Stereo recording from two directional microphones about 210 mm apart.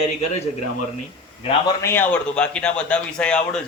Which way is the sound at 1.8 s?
10° left (ahead or behind).